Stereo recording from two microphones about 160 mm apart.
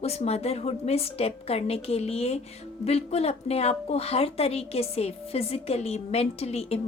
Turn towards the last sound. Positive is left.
turn(degrees=40)  # may be behind; listen again after turning